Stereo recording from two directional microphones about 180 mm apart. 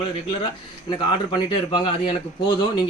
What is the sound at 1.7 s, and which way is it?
Speech, 30° left (ahead or behind).